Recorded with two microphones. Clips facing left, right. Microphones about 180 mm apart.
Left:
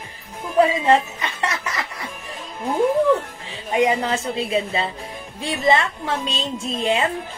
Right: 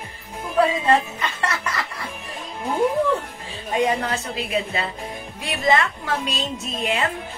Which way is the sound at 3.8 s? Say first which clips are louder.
Left 3 dB; 25° left (ahead or behind).